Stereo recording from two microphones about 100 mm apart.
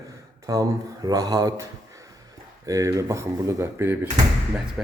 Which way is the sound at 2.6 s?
30° right (ahead or behind).